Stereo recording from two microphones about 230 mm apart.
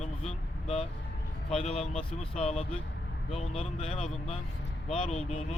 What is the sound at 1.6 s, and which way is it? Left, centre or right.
Speech, left.